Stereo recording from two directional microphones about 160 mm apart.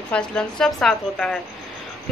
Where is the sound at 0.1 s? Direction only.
5° left (ahead or behind).